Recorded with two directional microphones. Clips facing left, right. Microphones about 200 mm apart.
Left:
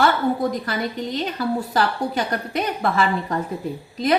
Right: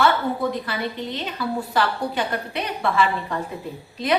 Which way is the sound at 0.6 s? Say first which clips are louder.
Left 2 dB; 45° left (ahead or behind).